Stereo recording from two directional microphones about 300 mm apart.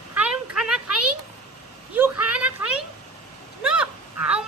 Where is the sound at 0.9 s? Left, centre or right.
Right.